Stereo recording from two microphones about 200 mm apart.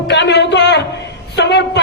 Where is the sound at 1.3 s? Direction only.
60° left (ahead or behind).